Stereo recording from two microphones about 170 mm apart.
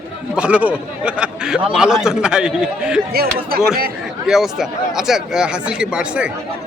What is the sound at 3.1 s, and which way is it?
Speech, 65° right (ahead or behind).